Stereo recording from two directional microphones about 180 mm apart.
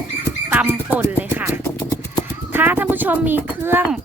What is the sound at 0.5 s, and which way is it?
Music, 10° right (ahead or behind).